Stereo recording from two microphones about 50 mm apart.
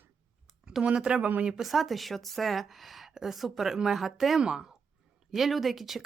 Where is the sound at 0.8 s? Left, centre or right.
Right.